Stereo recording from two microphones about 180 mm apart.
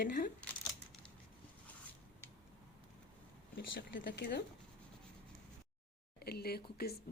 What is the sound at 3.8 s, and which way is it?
Speech, 65° left (ahead or behind).